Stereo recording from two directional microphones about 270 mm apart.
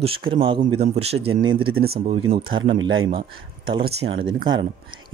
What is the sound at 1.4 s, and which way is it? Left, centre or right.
Speech, right.